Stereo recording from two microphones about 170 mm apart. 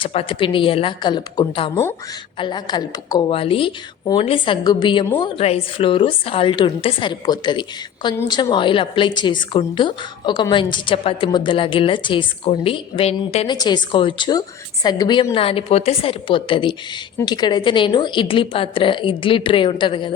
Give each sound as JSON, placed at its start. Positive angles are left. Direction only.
{"t": 0.0, "sound": "a woman's voice", "side_deg": 35}